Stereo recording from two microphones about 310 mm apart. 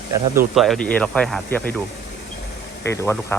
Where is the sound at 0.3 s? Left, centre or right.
Centre.